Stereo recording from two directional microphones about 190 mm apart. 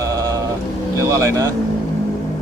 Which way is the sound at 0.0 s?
15° right (ahead or behind).